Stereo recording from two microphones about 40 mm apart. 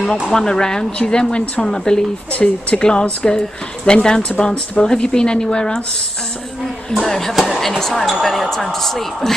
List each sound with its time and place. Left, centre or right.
0.3 s speech: centre
2.3 s speech: left
2.8 s speech: left
6.9 s speech: centre